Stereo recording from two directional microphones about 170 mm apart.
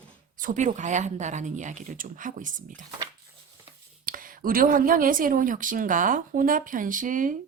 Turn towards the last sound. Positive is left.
turn(degrees=-50)  # may be behind; listen again after turning